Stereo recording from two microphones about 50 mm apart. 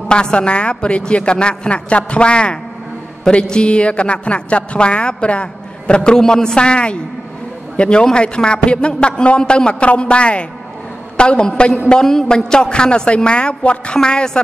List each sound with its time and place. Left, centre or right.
0.1 s a woman's voice: centre